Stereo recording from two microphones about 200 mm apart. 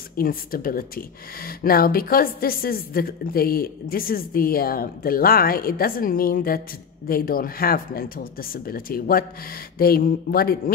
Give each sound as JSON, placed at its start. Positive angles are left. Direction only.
{"t": 0.2, "sound": "speech", "side_deg": 45}